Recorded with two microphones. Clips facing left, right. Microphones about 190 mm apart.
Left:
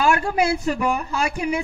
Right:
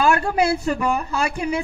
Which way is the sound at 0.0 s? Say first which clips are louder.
Right 1 dB; 15° left (ahead or behind).